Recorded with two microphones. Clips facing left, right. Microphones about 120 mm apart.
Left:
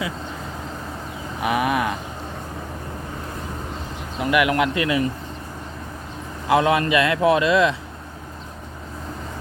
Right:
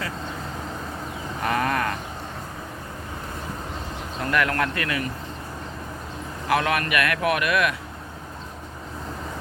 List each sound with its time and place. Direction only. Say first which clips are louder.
1.4 s livestock: left 3 dB; 10° left (ahead or behind)
4.2 s speech: left 5 dB; 10° left (ahead or behind)
6.5 s speech: left 5 dB; 20° left (ahead or behind)